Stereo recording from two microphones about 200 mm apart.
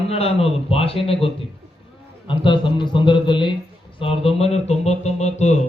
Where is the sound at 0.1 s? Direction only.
30° left (ahead or behind).